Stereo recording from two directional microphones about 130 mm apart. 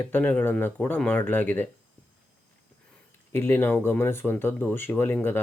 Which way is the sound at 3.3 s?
20° left (ahead or behind).